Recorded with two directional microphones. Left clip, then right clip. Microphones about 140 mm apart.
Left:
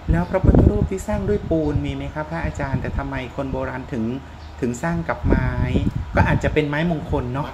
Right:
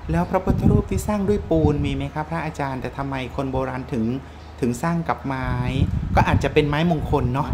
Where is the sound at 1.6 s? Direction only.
25° right (ahead or behind).